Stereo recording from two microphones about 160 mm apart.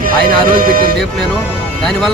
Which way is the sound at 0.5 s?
60° right (ahead or behind).